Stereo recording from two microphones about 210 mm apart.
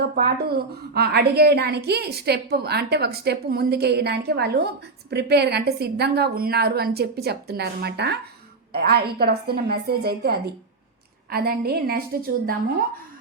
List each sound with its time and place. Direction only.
0.0 s a woman's voice: 45° right (ahead or behind)